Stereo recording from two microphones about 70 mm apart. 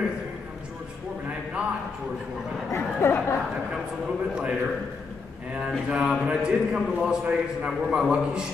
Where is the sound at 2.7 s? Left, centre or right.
Left.